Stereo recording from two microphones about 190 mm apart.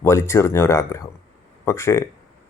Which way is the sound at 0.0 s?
15° left (ahead or behind).